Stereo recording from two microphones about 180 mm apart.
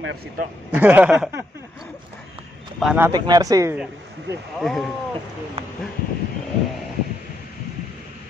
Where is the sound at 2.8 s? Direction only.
5° right (ahead or behind).